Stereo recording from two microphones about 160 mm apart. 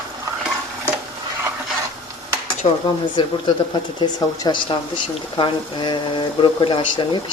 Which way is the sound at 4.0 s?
30° left (ahead or behind).